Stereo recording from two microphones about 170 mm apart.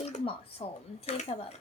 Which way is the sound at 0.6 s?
40° left (ahead or behind).